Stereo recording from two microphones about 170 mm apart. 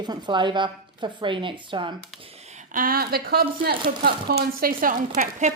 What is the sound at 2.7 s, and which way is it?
Speech, 55° right (ahead or behind).